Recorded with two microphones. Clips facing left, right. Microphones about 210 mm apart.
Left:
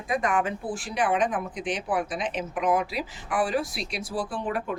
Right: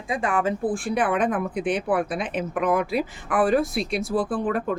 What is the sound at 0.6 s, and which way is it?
A woman's voice, 55° right (ahead or behind).